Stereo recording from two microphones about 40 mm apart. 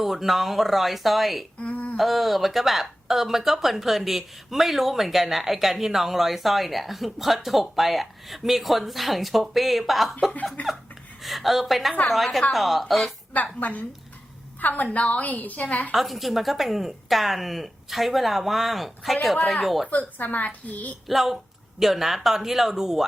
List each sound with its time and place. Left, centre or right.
0.0 s speech: centre
1.7 s humming: left
2.0 s speech: centre
10.6 s a woman's voice: left
11.2 s speech: centre
13.3 s a woman's voice: left
14.9 s a woman's voice: left
16.0 s speech: centre
19.9 s a woman's voice: left
21.1 s speech: centre